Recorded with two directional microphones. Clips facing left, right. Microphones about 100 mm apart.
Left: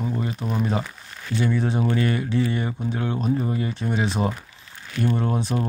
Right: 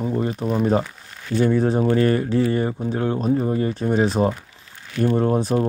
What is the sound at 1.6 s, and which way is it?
Speech, 40° right (ahead or behind).